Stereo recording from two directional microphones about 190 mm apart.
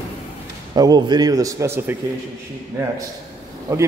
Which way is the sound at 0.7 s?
20° right (ahead or behind).